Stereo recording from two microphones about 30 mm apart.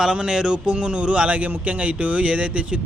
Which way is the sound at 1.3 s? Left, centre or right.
Right.